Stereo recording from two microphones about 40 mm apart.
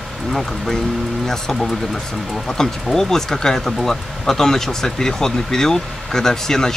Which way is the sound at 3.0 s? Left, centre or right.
Centre.